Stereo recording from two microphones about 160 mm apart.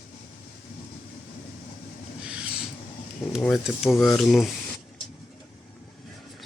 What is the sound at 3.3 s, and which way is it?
Speech, centre (ahead or behind).